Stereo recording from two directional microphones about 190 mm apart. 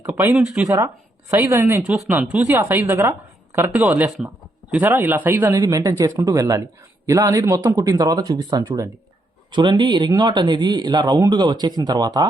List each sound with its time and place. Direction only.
0.2 s a woman's voice: 15° right (ahead or behind)
0.5 s speech: 5° right (ahead or behind)
1.3 s a woman's voice: 15° right (ahead or behind)